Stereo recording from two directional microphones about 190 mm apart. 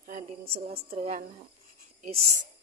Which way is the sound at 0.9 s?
45° right (ahead or behind).